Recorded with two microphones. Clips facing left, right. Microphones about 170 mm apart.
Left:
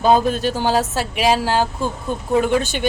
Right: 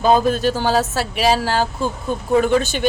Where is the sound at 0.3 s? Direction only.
45° right (ahead or behind).